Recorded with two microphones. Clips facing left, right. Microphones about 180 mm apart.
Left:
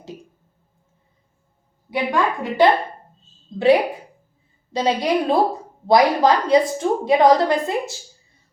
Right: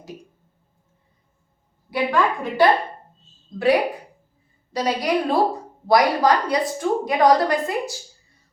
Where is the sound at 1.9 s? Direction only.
20° left (ahead or behind).